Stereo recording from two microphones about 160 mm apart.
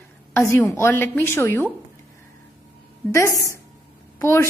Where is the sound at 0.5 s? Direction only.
15° left (ahead or behind).